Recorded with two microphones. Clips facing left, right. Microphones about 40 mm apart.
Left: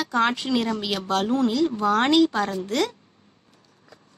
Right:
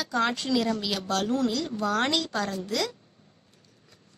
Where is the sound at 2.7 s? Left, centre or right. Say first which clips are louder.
Left 5 dB; left.